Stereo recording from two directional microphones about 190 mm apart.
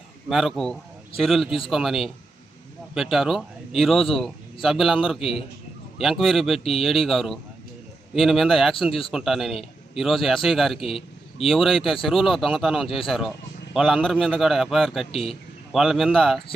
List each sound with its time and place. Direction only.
0.3 s a man's voice: centre (ahead or behind)
10.8 s a man's voice: 30° left (ahead or behind)
11.4 s a man's voice: centre (ahead or behind)